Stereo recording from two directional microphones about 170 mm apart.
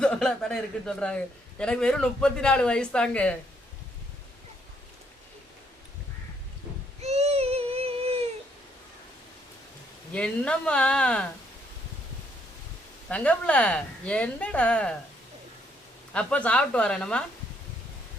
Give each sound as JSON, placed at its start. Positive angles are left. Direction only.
{"t": 0.0, "sound": "a man's voice", "side_deg": 5}
{"t": 7.0, "sound": "baby cry", "side_deg": -40}
{"t": 10.1, "sound": "a woman's voice", "side_deg": 5}
{"t": 13.1, "sound": "a woman's voice", "side_deg": 10}
{"t": 16.1, "sound": "a woman's voice", "side_deg": 5}